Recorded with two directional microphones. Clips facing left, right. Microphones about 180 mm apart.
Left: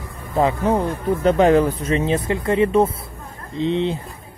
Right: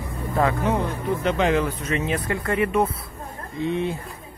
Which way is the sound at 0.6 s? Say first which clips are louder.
Left 4 dB; 40° left (ahead or behind).